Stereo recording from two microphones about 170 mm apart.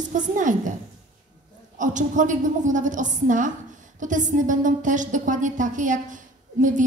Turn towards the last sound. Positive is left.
turn(degrees=-50)  # may be behind; listen again after turning